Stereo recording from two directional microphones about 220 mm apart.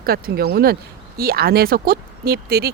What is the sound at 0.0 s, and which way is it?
Speech, 45° right (ahead or behind).